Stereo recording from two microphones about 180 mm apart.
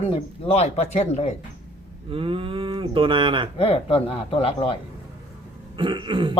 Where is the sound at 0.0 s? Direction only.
30° left (ahead or behind).